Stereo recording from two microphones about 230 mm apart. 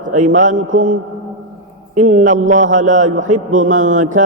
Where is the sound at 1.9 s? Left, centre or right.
Right.